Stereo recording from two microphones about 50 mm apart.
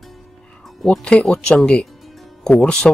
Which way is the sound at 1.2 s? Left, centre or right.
Centre.